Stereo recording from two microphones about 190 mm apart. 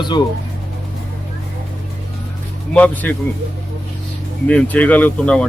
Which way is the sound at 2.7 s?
5° left (ahead or behind).